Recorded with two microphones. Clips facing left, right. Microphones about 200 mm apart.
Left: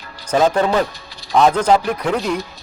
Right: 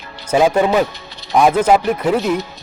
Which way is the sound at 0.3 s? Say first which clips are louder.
Right 2 dB; 10° right (ahead or behind).